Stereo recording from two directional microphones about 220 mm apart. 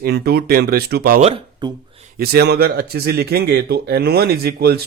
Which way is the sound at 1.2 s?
20° right (ahead or behind).